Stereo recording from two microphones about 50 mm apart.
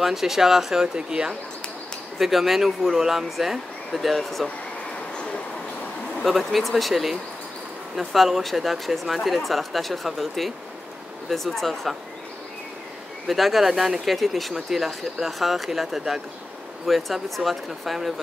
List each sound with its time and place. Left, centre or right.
0.0 s speech: centre
2.1 s speech: centre
5.1 s train: left
6.2 s speech: centre
13.3 s speech: centre